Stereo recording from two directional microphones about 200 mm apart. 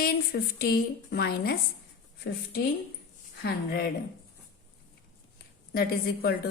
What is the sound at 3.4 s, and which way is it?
Speech, 50° left (ahead or behind).